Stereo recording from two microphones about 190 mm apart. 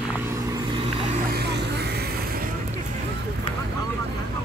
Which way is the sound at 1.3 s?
60° right (ahead or behind).